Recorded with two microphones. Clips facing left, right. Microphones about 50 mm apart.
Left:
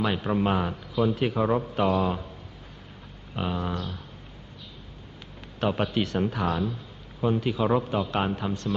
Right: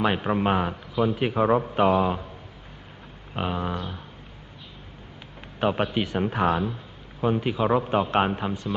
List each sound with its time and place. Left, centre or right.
0.0 s a man's voice: right
3.3 s a man's voice: centre
5.6 s a man's voice: centre
7.9 s a man's voice: right; by 8.7 s centre